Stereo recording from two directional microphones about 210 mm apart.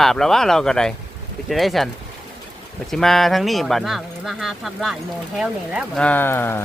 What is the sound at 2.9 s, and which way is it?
Speech, centre (ahead or behind).